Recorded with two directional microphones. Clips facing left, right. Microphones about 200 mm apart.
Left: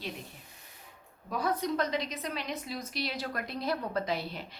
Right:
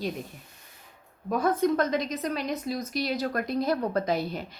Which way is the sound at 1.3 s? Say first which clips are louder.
Right 7 dB; 50° right (ahead or behind).